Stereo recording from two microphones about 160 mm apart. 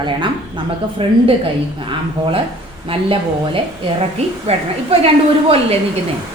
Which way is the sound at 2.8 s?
35° right (ahead or behind).